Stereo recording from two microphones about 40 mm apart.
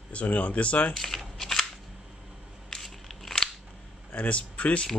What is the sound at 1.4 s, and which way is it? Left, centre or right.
Scissors, centre.